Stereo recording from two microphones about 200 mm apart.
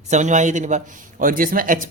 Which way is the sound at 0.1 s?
35° right (ahead or behind).